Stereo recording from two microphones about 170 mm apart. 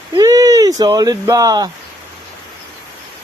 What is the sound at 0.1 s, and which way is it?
Speech, 20° right (ahead or behind).